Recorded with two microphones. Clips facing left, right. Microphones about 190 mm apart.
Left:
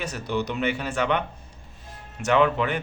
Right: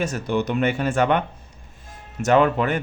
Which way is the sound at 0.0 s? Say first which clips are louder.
Right 5 dB; 50° right (ahead or behind).